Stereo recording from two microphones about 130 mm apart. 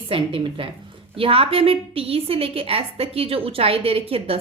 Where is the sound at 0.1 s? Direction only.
40° right (ahead or behind).